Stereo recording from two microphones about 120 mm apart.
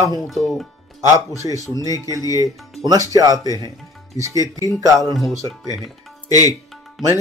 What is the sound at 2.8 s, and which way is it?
Speech, 30° right (ahead or behind).